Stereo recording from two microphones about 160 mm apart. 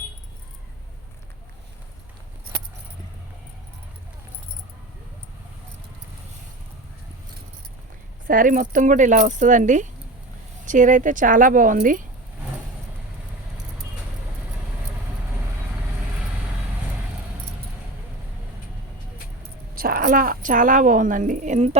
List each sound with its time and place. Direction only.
8.3 s a woman's voice: 60° right (ahead or behind)
19.4 s a woman's voice: 65° right (ahead or behind); by 21.8 s 45° right (ahead or behind)